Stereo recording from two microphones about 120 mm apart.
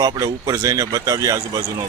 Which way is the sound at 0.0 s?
30° right (ahead or behind).